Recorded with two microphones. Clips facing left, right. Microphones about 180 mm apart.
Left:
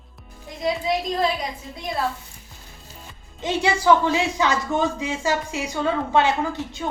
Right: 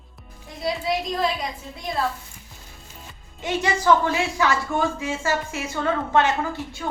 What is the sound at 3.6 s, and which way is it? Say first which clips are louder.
A child's voice: left 2 dB; 15° left (ahead or behind).